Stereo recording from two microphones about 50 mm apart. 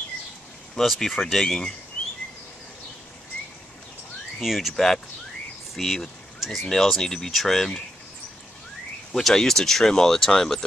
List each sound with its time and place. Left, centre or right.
0.7 s speech: centre
2.0 s bird: left
4.4 s speech: centre
9.1 s speech: centre